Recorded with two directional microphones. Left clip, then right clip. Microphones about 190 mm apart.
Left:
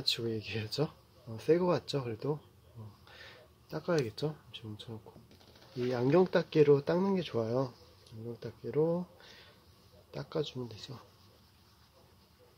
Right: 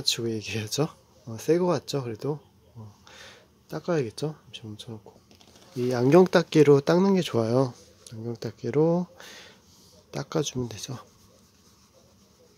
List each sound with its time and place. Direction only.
0.0 s speech: 30° right (ahead or behind)